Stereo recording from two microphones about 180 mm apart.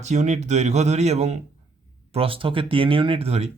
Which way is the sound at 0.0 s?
40° right (ahead or behind).